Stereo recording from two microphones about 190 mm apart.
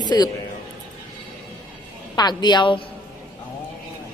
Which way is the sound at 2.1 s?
20° left (ahead or behind).